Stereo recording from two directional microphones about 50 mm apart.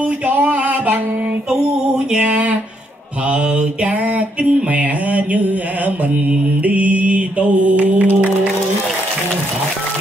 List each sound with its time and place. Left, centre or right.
0.4 s a sound: right
2.1 s mantra: right
6.6 s mantra: right